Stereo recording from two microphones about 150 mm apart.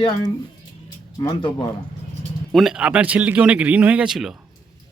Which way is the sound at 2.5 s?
Centre (ahead or behind).